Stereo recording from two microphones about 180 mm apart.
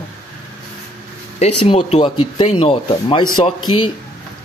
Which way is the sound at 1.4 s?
30° left (ahead or behind).